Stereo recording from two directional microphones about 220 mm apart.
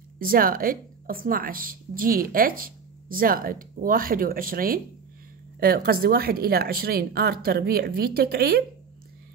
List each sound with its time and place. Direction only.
0.2 s a woman's voice: 40° right (ahead or behind)